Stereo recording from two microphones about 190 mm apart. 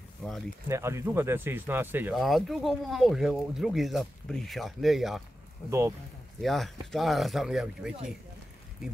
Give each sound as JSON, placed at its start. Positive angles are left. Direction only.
{"t": 0.7, "sound": "speech", "side_deg": -15}
{"t": 2.1, "sound": "speech", "side_deg": 0}
{"t": 5.7, "sound": "speech", "side_deg": -15}
{"t": 6.4, "sound": "speech", "side_deg": 0}